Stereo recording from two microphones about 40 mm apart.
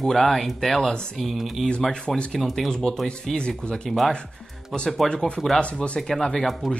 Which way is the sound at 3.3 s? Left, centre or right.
Left.